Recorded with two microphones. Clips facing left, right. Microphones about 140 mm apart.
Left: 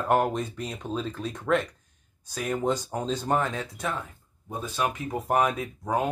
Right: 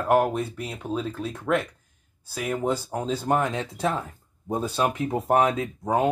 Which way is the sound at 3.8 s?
35° right (ahead or behind).